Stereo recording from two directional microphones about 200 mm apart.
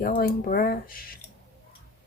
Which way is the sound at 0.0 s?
45° left (ahead or behind).